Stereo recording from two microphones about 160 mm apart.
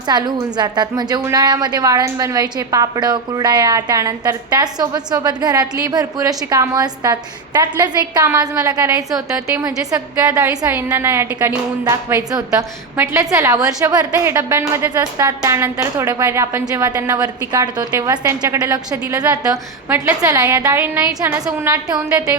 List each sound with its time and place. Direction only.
0.1 s a woman's voice: 25° right (ahead or behind)